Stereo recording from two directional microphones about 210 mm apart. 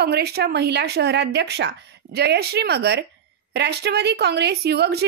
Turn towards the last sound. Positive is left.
turn(degrees=-50)  # may be behind; listen again after turning